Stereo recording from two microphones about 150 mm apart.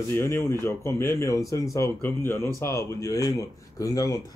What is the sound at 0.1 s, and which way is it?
A man's voice, 15° left (ahead or behind).